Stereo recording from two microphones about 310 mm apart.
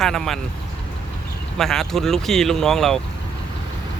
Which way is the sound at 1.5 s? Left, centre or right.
Centre.